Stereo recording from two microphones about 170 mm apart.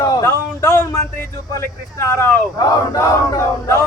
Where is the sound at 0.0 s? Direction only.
20° left (ahead or behind).